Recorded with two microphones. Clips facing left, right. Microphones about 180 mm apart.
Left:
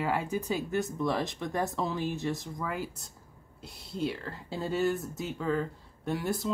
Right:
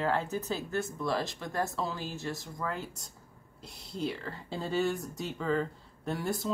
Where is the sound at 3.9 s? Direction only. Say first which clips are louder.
Left 2 dB; centre (ahead or behind).